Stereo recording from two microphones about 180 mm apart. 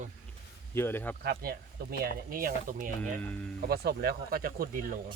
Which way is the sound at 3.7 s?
60° right (ahead or behind).